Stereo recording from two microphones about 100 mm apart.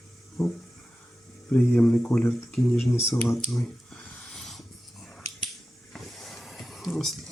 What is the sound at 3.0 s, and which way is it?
Speech, 30° left (ahead or behind).